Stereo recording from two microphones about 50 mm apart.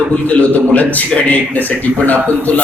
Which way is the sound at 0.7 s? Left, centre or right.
Left.